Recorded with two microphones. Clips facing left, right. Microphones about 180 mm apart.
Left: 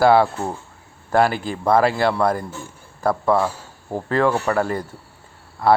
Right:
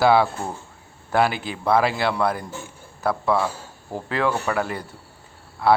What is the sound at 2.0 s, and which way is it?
A man's voice, 5° right (ahead or behind).